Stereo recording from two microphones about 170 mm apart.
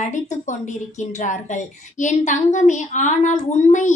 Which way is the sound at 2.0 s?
45° left (ahead or behind).